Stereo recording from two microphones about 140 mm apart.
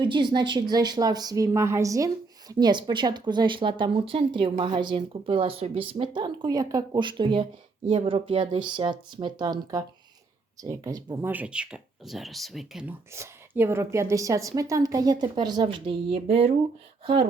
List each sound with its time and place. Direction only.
0.0 s a woman's voice: 35° right (ahead or behind)
11.3 s speech: 10° right (ahead or behind)
13.1 s a woman's voice: 15° right (ahead or behind); by 16.6 s 45° right (ahead or behind)